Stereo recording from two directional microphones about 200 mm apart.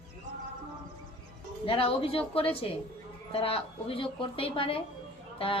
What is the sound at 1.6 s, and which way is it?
A woman's voice, 25° left (ahead or behind).